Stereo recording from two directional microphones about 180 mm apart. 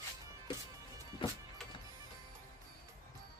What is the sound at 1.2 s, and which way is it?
Music, 30° left (ahead or behind).